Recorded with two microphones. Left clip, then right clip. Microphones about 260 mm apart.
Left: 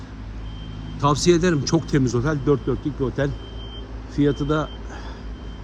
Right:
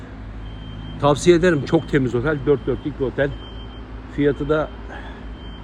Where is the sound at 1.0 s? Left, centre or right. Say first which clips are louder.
Right 3 dB; centre.